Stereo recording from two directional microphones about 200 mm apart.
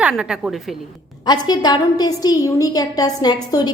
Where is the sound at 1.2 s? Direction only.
20° left (ahead or behind).